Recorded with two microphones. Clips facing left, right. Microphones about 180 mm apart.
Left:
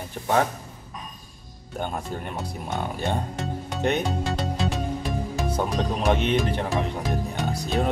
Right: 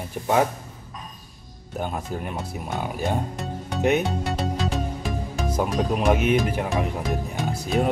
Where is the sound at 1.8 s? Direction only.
5° right (ahead or behind).